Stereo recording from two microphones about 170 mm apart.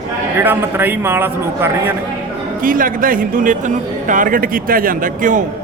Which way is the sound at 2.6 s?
55° right (ahead or behind).